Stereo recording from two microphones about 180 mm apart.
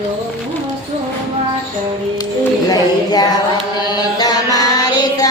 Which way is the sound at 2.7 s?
20° left (ahead or behind).